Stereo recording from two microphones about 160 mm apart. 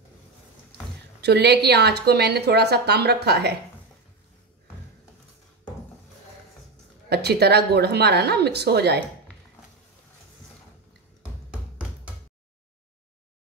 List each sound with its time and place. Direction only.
1.2 s a woman's voice: 90° right
7.1 s a woman's voice: 90° right